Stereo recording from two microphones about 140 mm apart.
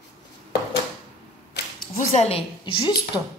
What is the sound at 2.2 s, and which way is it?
Speech, 40° left (ahead or behind).